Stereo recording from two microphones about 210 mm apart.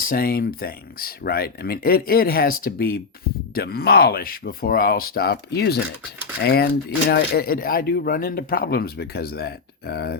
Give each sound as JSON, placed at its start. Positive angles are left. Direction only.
{"t": 0.0, "sound": "a man's voice", "side_deg": 45}